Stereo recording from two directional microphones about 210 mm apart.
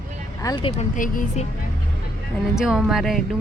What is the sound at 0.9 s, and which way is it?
Speech, 40° left (ahead or behind).